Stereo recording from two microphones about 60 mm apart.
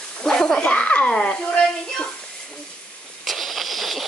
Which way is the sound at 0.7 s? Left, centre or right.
Left.